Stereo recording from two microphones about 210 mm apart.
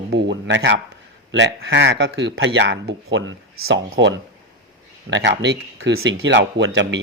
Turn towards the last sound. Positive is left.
turn(degrees=-65)  # may be behind; listen again after turning